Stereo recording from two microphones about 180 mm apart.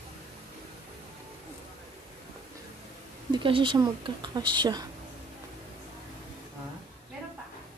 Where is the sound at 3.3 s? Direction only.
30° right (ahead or behind).